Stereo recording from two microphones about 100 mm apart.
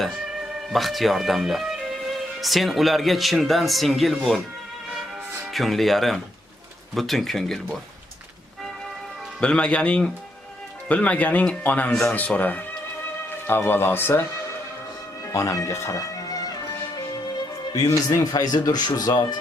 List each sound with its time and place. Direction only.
0.7 s speech: centre (ahead or behind)
5.5 s speech: centre (ahead or behind)
9.4 s speech: 10° left (ahead or behind)
15.3 s speech: 30° left (ahead or behind)
18.2 s speech: 40° left (ahead or behind)